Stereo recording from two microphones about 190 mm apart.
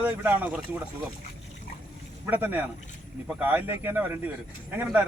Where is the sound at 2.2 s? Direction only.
10° right (ahead or behind).